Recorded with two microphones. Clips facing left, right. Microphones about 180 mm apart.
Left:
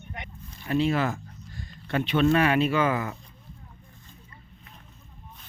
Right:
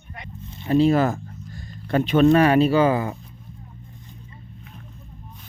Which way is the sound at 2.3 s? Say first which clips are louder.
Right 6 dB; 40° right (ahead or behind).